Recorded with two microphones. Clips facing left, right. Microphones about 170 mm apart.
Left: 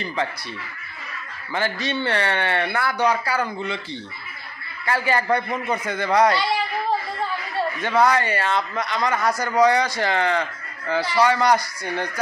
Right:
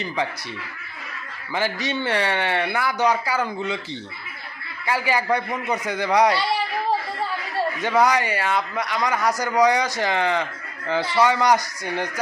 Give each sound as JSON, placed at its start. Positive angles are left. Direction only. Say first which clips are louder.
{"t": 1.5, "sound": "a man's voice", "louder": "even", "side_deg": -15}
{"t": 4.9, "sound": "a man's voice", "louder": "left 1 dB", "side_deg": -10}
{"t": 7.8, "sound": "a man's voice", "louder": "even", "side_deg": -15}